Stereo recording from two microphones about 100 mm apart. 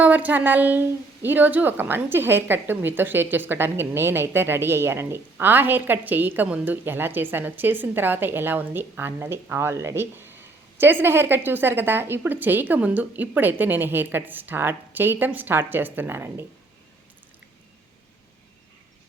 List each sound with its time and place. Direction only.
0.0 s a woman's voice: 15° right (ahead or behind)